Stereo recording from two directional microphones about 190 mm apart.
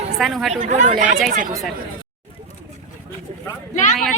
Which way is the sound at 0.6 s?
35° right (ahead or behind).